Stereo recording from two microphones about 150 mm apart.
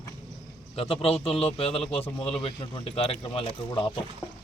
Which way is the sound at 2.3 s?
40° left (ahead or behind).